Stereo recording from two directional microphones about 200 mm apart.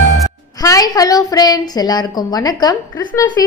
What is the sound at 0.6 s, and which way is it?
A woman's voice, 15° left (ahead or behind).